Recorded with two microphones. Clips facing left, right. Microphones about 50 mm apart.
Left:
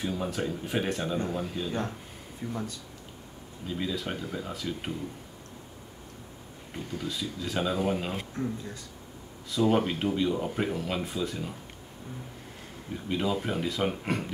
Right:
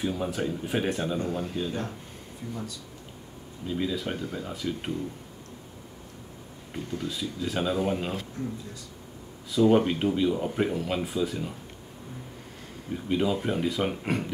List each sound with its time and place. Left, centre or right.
0.0 s speech: centre
3.6 s speech: centre
6.9 s speech: centre
8.4 s a man's voice: left
9.5 s speech: centre
12.9 s speech: centre